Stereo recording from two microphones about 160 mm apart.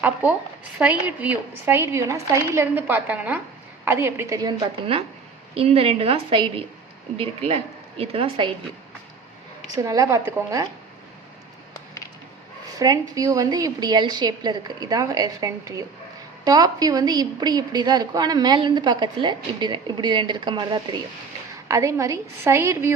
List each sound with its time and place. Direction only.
0.0 s a woman's voice: 10° right (ahead or behind)
5.5 s speech: 35° right (ahead or behind)
9.6 s a woman's voice: 20° right (ahead or behind)
12.8 s a woman's voice: 20° right (ahead or behind)